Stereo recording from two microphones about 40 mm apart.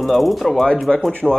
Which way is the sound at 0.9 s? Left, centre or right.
Left.